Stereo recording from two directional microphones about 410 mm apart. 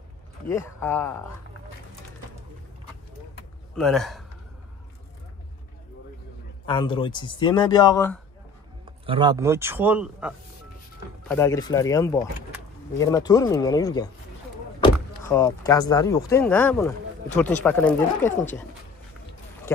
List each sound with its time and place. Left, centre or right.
0.5 s a man's voice: centre
3.7 s a man's voice: centre
6.6 s a man's voice: centre
9.0 s a man's voice: centre
14.8 s door: centre
15.9 s a man's voice: centre
18.3 s a man's voice: centre